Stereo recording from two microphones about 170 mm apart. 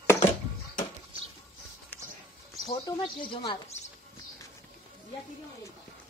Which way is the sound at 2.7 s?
25° left (ahead or behind).